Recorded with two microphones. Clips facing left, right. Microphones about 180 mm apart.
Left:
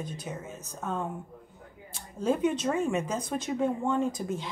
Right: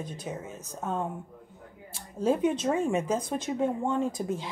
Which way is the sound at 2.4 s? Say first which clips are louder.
Right 1 dB; 30° right (ahead or behind).